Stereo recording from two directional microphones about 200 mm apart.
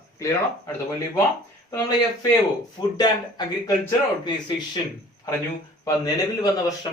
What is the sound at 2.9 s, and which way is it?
Speech, 20° left (ahead or behind).